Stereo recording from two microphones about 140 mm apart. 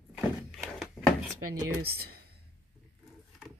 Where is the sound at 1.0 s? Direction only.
5° right (ahead or behind).